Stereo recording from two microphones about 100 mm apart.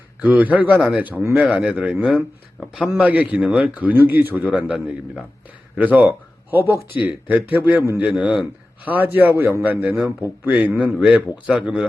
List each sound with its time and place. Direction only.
0.2 s a man's voice: 15° right (ahead or behind)
3.0 s a man's voice: 15° right (ahead or behind)